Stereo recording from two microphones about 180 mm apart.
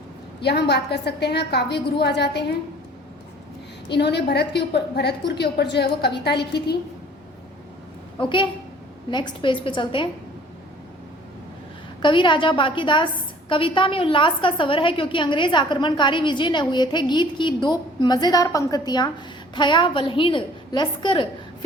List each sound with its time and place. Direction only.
0.4 s a woman's voice: 65° left (ahead or behind)
3.8 s a woman's voice: 70° left (ahead or behind)
8.2 s a woman's voice: 30° left (ahead or behind)
12.0 s a woman's voice: 25° left (ahead or behind)